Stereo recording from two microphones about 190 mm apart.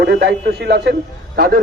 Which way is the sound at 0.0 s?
55° right (ahead or behind).